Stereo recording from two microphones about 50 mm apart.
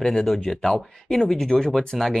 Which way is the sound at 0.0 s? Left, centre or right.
Centre.